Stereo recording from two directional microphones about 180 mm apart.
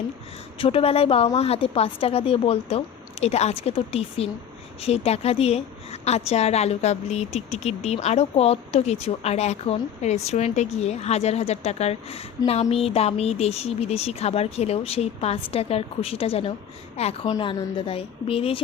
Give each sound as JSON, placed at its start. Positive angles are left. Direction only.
{"t": 0.6, "sound": "a woman's voice", "side_deg": 30}